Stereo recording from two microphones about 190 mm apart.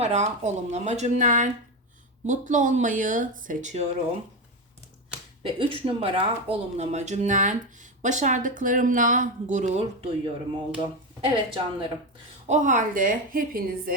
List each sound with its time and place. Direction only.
0.0 s speech: 35° right (ahead or behind)
5.4 s a woman's voice: 25° right (ahead or behind)
12.5 s a woman's voice: 40° right (ahead or behind)